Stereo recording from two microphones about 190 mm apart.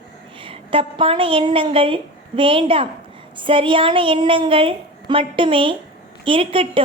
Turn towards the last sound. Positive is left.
turn(degrees=-30)  # may be behind; listen again after turning